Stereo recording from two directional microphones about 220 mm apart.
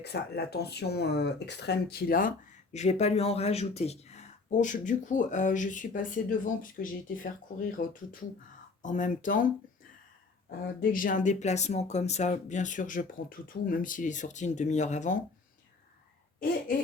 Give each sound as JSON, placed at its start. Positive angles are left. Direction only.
{"t": 0.0, "sound": "speech", "side_deg": 50}
{"t": 10.8, "sound": "speech", "side_deg": 40}